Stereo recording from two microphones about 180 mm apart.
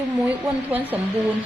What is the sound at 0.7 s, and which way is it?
Speech, 10° right (ahead or behind).